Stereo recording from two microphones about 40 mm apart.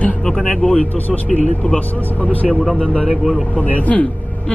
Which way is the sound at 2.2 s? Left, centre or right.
Left.